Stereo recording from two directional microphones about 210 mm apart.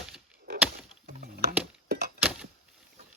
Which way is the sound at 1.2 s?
50° right (ahead or behind).